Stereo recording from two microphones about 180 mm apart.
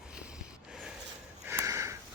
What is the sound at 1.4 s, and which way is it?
Sniff, 15° right (ahead or behind).